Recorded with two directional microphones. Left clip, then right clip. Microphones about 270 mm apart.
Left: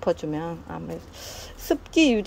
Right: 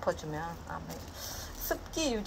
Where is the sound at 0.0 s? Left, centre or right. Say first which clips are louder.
Left 8 dB; left.